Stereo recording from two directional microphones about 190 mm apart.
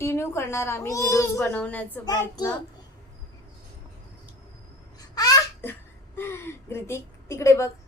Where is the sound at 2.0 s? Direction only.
20° left (ahead or behind).